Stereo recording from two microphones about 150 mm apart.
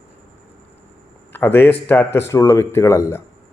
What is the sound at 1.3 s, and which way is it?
A man's voice, 15° left (ahead or behind).